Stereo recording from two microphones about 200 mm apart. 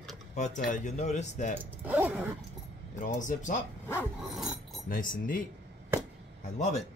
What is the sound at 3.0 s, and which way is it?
Speech, 40° left (ahead or behind).